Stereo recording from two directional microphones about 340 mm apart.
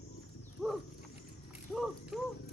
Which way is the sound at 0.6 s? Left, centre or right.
Centre.